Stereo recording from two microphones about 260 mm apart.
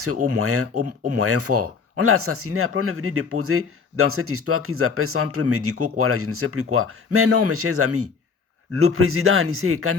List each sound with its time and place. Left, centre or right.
0.0 s speech: right